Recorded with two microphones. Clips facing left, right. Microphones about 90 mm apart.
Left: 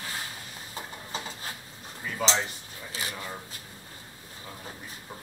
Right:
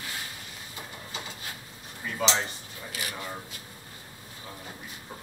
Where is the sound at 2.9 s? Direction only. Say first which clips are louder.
Left 1 dB; 30° left (ahead or behind).